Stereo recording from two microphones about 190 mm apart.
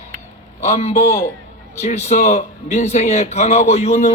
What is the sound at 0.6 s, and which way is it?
A man's voice, 35° left (ahead or behind).